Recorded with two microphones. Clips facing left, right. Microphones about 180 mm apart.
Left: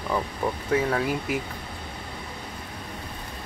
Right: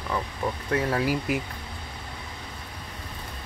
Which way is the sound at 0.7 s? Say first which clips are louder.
Even; centre (ahead or behind).